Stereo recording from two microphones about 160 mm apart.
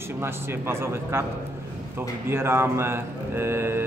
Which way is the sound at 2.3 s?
15° right (ahead or behind).